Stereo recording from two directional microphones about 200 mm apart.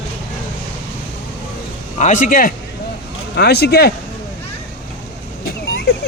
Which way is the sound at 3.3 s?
55° left (ahead or behind).